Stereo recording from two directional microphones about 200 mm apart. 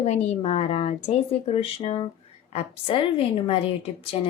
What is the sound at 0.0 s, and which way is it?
A woman's voice, 35° left (ahead or behind).